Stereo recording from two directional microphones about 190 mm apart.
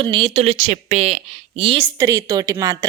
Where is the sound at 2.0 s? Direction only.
15° right (ahead or behind).